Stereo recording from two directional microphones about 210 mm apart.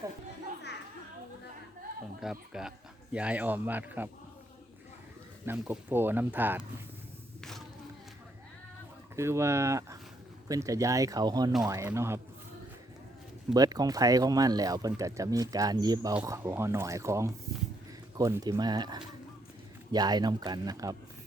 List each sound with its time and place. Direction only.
2.2 s speech: 5° right (ahead or behind)
5.5 s speech: 10° right (ahead or behind)
9.1 s speech: 15° right (ahead or behind)
13.5 s speech: 20° right (ahead or behind)